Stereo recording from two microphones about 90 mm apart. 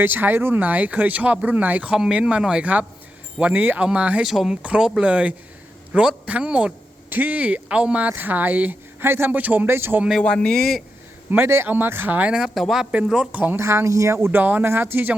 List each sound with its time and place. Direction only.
0.0 s speech: 20° right (ahead or behind)
10.2 s speech: 10° left (ahead or behind)
11.3 s speech: 25° right (ahead or behind)
12.3 s speech: 5° right (ahead or behind)
13.6 s speech: 30° right (ahead or behind)